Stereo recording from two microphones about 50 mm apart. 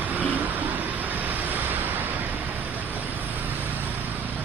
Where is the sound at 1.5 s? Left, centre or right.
Right.